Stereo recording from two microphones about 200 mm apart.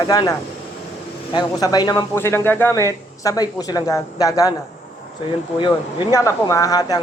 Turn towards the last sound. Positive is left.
turn(degrees=20)  # may be behind; listen again after turning